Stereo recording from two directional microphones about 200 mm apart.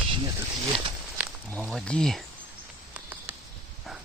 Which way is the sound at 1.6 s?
Centre (ahead or behind).